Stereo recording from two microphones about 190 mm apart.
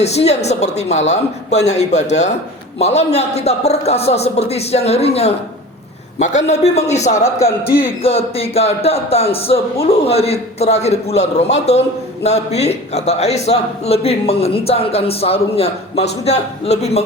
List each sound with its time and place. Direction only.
0.0 s a man's voice: 35° left (ahead or behind)
7.6 s a man's voice: 50° left (ahead or behind)
8.0 s a man's voice: 30° left (ahead or behind)